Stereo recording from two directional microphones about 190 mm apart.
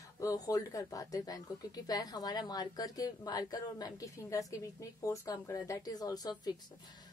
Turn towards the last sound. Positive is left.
turn(degrees=20)  # may be behind; listen again after turning